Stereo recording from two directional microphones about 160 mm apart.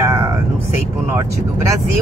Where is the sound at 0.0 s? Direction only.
20° right (ahead or behind).